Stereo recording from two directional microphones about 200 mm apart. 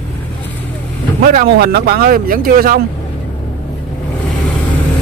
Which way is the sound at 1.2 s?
45° right (ahead or behind).